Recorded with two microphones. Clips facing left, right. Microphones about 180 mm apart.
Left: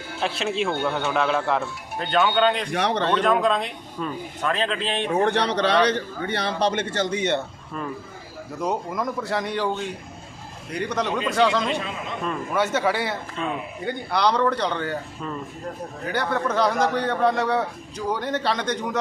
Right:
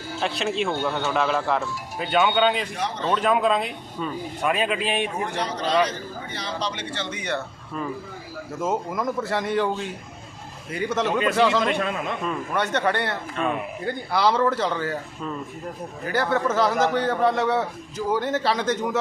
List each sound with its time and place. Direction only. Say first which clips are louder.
0.2 s a man's voice: even; centre (ahead or behind)
2.7 s speech: left 5 dB; 70° left (ahead or behind)
3.1 s speech: right 2 dB; 5° right (ahead or behind)
5.1 s a man's voice: left 7 dB; 65° left (ahead or behind); by 7.2 s 40° left (ahead or behind)
7.2 s speech: left 3 dB; 25° left (ahead or behind)
8.5 s a man's voice: even; centre (ahead or behind)
11.6 s a man's voice: right 3 dB; 60° right (ahead or behind)
12.2 s a man's voice: left 5 dB; centre (ahead or behind)
13.3 s a man's voice: right 6 dB; 60° right (ahead or behind)
13.8 s a man's voice: even; 5° right (ahead or behind)